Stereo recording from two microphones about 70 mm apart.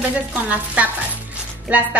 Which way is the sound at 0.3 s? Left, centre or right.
Centre.